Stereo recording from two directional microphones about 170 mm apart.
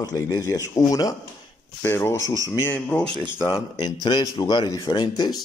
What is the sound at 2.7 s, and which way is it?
Speech, 5° left (ahead or behind).